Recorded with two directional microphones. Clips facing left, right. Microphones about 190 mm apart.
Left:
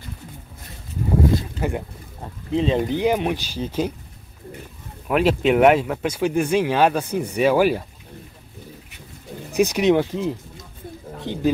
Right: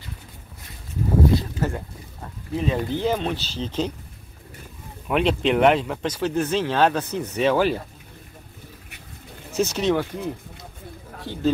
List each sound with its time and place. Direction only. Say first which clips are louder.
1.6 s a man's voice: left 1 dB; 10° left (ahead or behind)
2.5 s speech: left 4 dB; 25° left (ahead or behind)
5.0 s speech: left 3 dB; 5° left (ahead or behind)
9.5 s speech: left 4 dB; 15° left (ahead or behind)